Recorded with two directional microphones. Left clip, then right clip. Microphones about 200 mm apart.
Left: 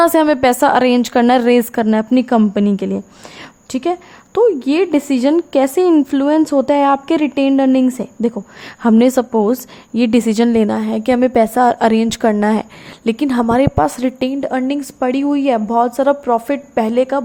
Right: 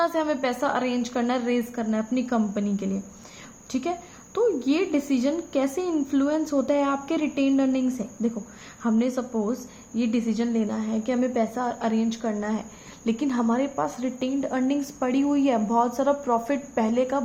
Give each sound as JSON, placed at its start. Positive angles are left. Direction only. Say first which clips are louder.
{"t": 0.0, "sound": "a woman's voice", "louder": "left 13 dB", "side_deg": 50}